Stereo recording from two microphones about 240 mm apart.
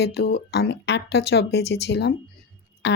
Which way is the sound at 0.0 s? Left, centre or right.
Left.